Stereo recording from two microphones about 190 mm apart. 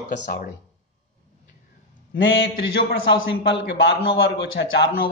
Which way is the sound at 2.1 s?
80° left.